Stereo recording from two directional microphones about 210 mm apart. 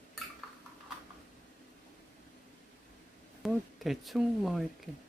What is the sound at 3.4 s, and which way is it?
Speech, centre (ahead or behind).